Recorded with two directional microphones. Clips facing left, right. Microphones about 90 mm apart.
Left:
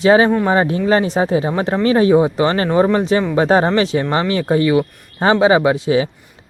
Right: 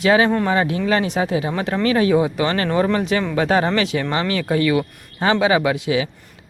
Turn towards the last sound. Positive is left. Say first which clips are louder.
# left 5 dB
turn(degrees=35)  # may be behind; listen again after turning